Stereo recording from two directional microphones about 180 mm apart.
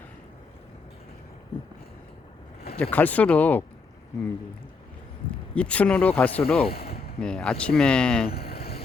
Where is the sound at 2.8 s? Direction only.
10° left (ahead or behind).